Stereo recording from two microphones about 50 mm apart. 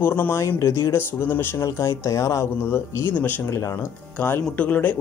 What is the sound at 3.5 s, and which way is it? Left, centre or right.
Speech, left.